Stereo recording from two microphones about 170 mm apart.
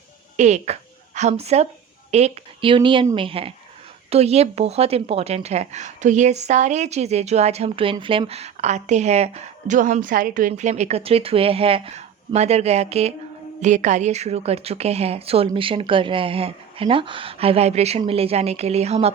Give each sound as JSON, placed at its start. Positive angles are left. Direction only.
{"t": 0.3, "sound": "speech", "side_deg": -45}